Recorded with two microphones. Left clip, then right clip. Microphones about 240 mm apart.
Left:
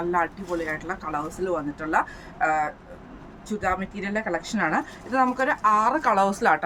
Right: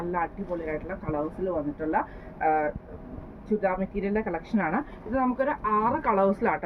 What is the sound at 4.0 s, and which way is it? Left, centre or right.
A woman's voice, left.